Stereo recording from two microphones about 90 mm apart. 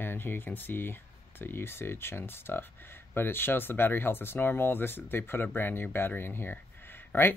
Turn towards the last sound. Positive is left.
turn(degrees=25)  # may be behind; listen again after turning